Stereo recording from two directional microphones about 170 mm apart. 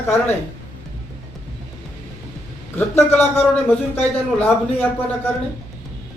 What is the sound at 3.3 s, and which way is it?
Speech, 35° left (ahead or behind).